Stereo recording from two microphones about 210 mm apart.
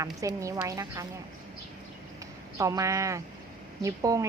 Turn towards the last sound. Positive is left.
turn(degrees=-15)  # may be behind; listen again after turning